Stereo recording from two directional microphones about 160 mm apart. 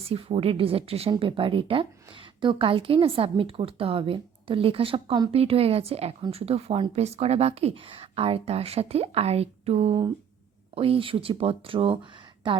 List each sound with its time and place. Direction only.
0.1 s a woman's voice: 35° right (ahead or behind)